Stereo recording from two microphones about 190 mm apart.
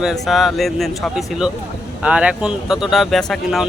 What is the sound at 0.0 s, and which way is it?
Speech, centre (ahead or behind).